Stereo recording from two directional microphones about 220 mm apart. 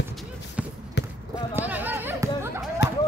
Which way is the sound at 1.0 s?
55° left (ahead or behind).